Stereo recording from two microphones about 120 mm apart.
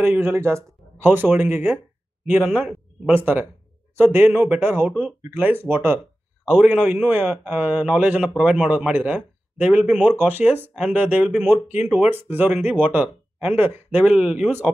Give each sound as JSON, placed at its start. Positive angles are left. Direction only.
{"t": 0.0, "sound": "speech", "side_deg": -20}
{"t": 8.2, "sound": "a man's voice", "side_deg": 0}
{"t": 8.5, "sound": "speech", "side_deg": -10}
{"t": 10.7, "sound": "speech", "side_deg": -5}